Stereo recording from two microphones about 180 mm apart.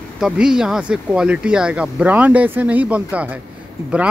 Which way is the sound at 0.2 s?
5° right (ahead or behind).